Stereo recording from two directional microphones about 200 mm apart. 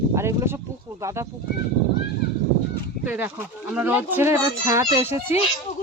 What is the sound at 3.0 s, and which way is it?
Speech, 10° right (ahead or behind).